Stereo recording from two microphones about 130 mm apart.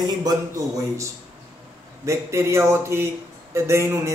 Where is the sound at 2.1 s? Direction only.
20° right (ahead or behind).